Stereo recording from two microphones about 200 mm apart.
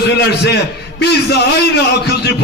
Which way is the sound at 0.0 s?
55° left (ahead or behind).